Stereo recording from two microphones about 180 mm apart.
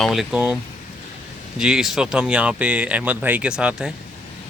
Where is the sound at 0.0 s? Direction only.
Centre (ahead or behind).